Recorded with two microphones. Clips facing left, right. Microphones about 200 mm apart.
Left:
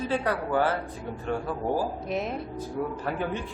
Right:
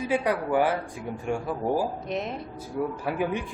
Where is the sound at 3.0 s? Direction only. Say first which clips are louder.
Right 2 dB; 10° right (ahead or behind).